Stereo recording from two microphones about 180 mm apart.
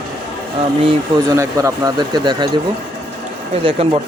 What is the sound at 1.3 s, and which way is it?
Speech, 15° right (ahead or behind).